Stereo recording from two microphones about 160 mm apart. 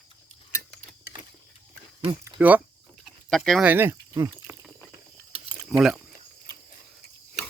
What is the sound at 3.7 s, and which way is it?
Speech, 15° right (ahead or behind).